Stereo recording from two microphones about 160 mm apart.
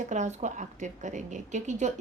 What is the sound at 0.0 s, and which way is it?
A woman's voice, 50° right (ahead or behind).